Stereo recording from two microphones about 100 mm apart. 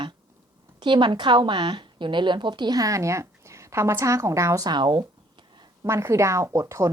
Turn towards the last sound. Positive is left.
turn(degrees=-30)  # may be behind; listen again after turning